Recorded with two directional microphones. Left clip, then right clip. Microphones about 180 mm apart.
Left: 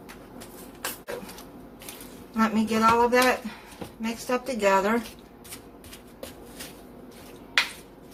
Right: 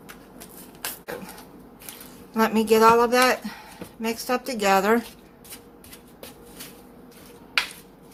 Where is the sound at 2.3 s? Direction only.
55° right (ahead or behind).